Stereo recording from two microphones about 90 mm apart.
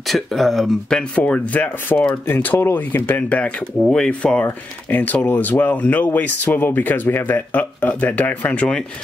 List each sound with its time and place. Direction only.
0.1 s speech: centre (ahead or behind)